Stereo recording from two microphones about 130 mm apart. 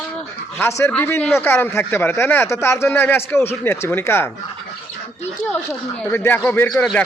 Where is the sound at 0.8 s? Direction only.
15° left (ahead or behind).